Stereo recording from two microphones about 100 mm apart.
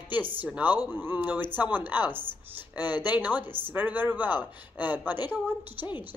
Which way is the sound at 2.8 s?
45° left (ahead or behind).